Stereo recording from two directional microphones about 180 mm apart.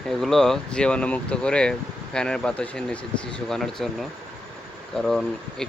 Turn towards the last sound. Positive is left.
turn(degrees=0)  # may be behind; listen again after turning